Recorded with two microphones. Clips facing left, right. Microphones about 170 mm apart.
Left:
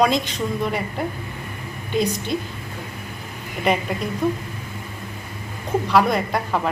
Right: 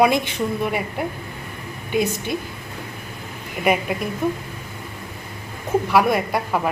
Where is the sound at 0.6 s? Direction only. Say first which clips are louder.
Left 1 dB; 15° right (ahead or behind).